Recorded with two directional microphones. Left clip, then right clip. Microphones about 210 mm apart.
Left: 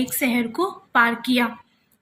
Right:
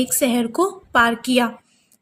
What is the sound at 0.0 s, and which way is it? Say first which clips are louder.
A woman's voice: right 3 dB; 45° right (ahead or behind).